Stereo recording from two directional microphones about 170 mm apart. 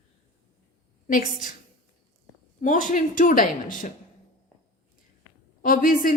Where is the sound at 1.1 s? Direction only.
50° left (ahead or behind).